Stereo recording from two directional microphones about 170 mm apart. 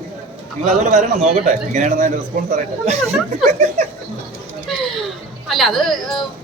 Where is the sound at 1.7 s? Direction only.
45° right (ahead or behind).